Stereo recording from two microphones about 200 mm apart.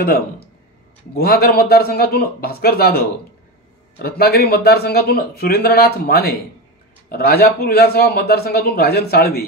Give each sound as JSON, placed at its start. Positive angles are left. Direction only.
{"t": 1.1, "sound": "a man's voice", "side_deg": 50}
{"t": 4.0, "sound": "a man's voice", "side_deg": 50}